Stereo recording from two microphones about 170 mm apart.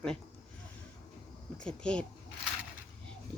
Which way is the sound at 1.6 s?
5° left (ahead or behind).